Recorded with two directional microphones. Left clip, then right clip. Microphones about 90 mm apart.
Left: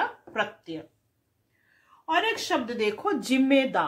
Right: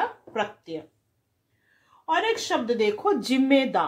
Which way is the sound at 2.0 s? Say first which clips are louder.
Right 1 dB; 25° right (ahead or behind).